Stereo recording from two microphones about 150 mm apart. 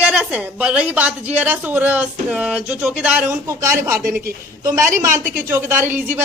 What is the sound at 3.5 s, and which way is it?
Speech, 20° right (ahead or behind).